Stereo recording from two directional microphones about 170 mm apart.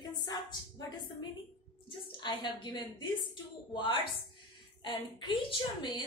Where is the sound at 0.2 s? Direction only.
25° left (ahead or behind).